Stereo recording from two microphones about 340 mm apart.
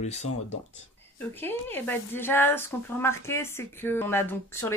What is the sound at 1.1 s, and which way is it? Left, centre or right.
A woman's voice, centre.